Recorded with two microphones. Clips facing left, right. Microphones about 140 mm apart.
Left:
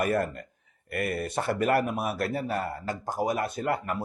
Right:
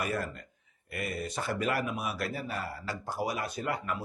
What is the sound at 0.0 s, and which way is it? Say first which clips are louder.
A man's voice: left 7 dB; 55° left (ahead or behind).